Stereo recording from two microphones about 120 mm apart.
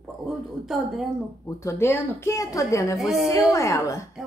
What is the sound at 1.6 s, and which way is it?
A woman's voice, 20° left (ahead or behind).